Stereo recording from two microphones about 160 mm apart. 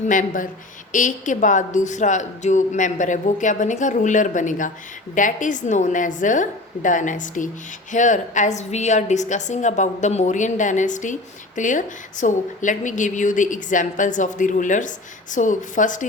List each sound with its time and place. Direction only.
0.1 s a woman's voice: 55° left (ahead or behind)